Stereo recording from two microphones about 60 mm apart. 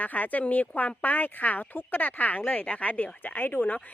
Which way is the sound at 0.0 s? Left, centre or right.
Left.